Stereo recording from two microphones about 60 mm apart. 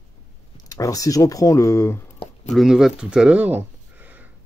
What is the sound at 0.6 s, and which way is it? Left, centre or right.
Speech, left.